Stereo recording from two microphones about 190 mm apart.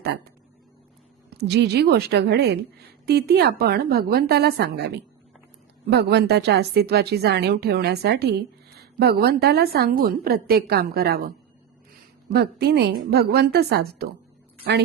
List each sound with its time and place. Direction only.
1.4 s a woman's voice: 60° right (ahead or behind)
12.3 s a woman's voice: 55° right (ahead or behind)